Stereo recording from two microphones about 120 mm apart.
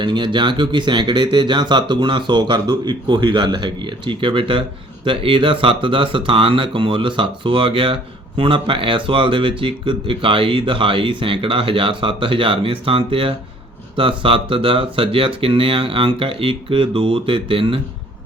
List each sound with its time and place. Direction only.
0.0 s speech: 40° right (ahead or behind)